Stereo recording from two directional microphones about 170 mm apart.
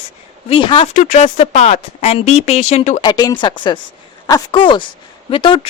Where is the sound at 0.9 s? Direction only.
45° left (ahead or behind).